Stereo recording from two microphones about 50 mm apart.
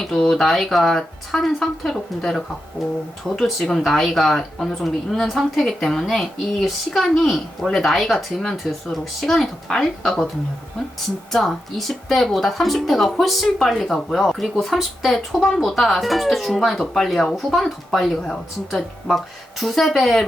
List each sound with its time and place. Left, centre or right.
0.0 s a woman's voice: centre
11.3 s a woman's voice: centre